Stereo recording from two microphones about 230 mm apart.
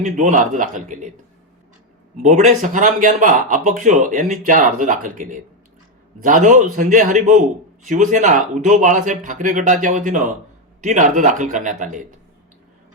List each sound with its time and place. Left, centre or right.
0.0 s speech: right
2.2 s speech: right